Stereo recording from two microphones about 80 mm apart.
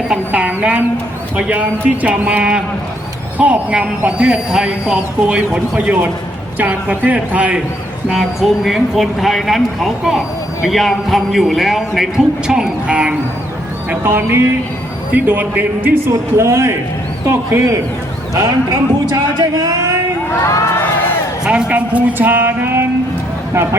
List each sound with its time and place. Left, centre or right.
0.3 s speech: centre
8.1 s a man's voice: centre
14.0 s speech: right
16.0 s a man's voice: right
20.4 s crowd: left
21.4 s a man's voice: centre; by 22.9 s right